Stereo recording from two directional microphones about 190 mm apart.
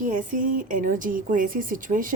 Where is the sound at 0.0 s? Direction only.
40° right (ahead or behind).